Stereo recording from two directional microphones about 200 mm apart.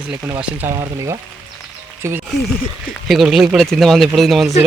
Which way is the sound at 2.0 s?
15° right (ahead or behind).